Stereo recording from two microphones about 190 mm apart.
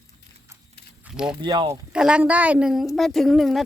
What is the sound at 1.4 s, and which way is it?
Speech, 20° right (ahead or behind).